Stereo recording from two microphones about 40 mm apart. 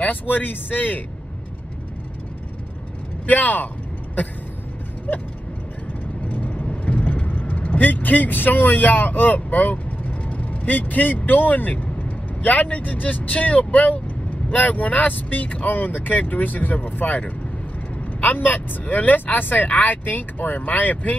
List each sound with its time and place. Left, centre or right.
0.0 s speech: left
3.3 s a sound: left
6.2 s vehicle: left
7.7 s speech: left
18.2 s speech: left